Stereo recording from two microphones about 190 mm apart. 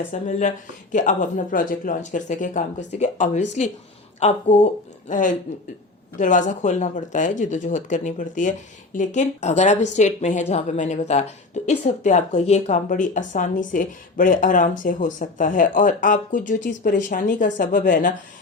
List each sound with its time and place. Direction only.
0.1 s speech: 40° left (ahead or behind)